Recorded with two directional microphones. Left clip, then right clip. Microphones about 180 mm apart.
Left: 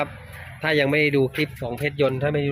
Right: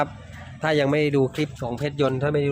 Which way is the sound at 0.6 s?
10° right (ahead or behind).